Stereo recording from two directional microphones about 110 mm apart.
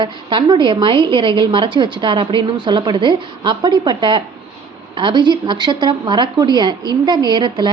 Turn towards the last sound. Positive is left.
turn(degrees=-40)  # may be behind; listen again after turning